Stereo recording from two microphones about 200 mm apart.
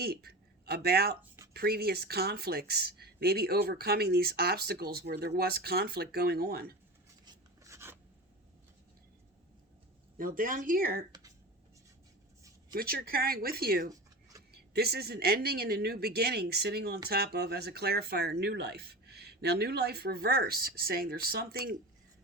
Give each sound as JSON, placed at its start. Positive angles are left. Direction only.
{"t": 0.0, "sound": "speech", "side_deg": -50}
{"t": 7.3, "sound": "a sound", "side_deg": -15}
{"t": 10.2, "sound": "speech", "side_deg": -45}
{"t": 12.7, "sound": "speech", "side_deg": -45}